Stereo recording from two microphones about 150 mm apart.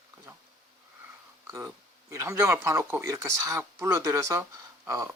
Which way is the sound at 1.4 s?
20° right (ahead or behind).